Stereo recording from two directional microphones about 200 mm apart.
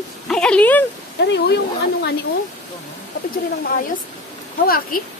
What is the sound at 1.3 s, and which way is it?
Speech, 60° left (ahead or behind).